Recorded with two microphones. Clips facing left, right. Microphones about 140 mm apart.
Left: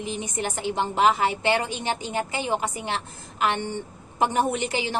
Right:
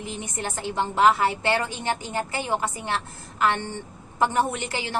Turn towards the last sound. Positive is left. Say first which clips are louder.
# left 1 dB
turn(degrees=20)  # may be behind; listen again after turning